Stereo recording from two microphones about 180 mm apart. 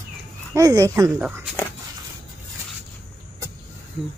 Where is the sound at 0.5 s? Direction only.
20° right (ahead or behind).